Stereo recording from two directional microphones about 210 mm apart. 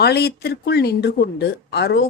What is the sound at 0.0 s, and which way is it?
Speech, 50° left (ahead or behind).